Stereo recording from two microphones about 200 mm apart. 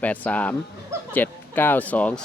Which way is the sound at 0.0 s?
5° left (ahead or behind).